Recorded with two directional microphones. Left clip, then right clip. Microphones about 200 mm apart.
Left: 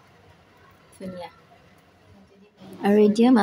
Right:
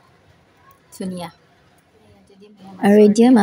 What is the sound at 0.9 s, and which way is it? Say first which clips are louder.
Speech: right 6 dB; 45° right (ahead or behind).